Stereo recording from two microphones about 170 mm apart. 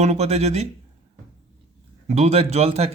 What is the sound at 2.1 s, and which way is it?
Speech, 40° right (ahead or behind).